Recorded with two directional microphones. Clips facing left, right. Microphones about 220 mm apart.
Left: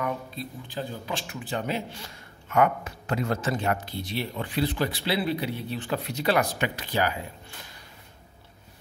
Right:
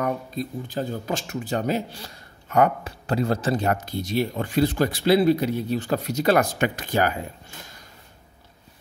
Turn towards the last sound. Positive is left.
turn(degrees=-50)  # may be behind; listen again after turning